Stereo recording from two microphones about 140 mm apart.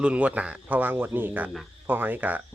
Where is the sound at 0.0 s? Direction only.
10° right (ahead or behind).